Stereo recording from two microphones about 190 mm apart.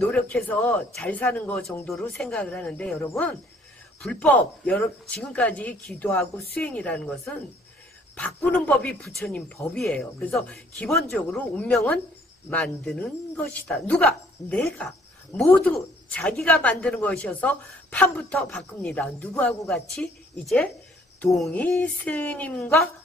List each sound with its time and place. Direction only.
0.0 s a woman's voice: 5° left (ahead or behind)